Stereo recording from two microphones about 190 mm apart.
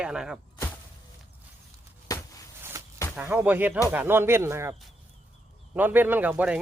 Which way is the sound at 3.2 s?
10° right (ahead or behind).